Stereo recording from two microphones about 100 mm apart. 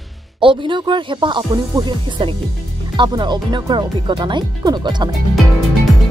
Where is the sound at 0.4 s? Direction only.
55° right (ahead or behind).